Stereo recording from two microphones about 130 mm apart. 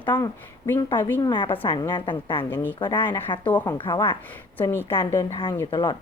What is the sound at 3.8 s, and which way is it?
Speech, 40° left (ahead or behind).